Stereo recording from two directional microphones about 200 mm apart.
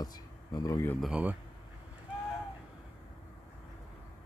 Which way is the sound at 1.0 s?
5° right (ahead or behind).